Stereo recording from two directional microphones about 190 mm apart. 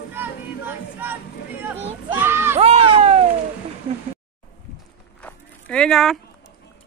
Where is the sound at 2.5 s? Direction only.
35° right (ahead or behind).